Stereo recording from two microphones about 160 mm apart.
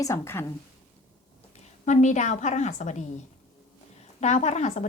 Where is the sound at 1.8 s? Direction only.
50° left (ahead or behind).